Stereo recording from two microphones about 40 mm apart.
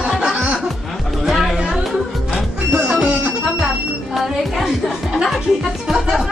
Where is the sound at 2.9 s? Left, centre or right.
Right.